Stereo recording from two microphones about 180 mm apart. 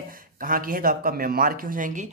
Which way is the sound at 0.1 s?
50° right (ahead or behind).